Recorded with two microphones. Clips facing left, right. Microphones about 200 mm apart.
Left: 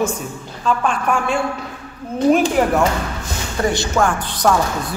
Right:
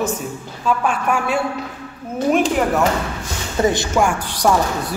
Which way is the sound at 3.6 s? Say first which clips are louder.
Right 3 dB; 25° right (ahead or behind).